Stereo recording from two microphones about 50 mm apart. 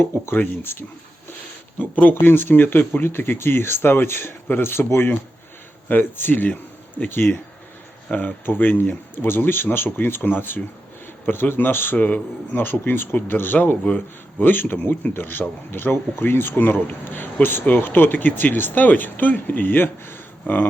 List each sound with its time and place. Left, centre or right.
0.0 s speech: left
1.8 s speech: left
5.9 s speech: left
7.1 s speech: left
11.9 s a man's voice: left
12.8 s speech: left